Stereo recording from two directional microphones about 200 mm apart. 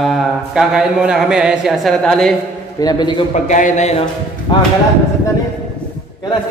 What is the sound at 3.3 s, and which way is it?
Speech, 40° left (ahead or behind).